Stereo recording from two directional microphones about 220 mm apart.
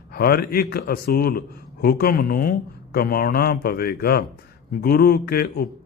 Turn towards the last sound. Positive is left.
turn(degrees=45)  # may be behind; listen again after turning